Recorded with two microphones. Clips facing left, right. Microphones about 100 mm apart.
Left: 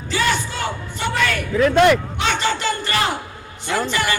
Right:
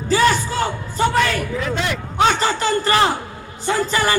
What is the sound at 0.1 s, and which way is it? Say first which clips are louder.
Music: right 5 dB; 40° right (ahead or behind).